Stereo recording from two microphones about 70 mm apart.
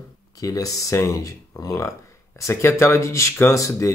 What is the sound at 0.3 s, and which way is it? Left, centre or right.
Speech, left.